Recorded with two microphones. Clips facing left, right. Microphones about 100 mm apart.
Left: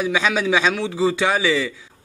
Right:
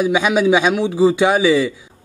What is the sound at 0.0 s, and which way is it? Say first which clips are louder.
A man's voice: right 5 dB; 15° right (ahead or behind).